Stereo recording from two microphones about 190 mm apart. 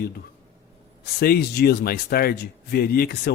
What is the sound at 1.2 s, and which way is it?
Speech, 55° left (ahead or behind).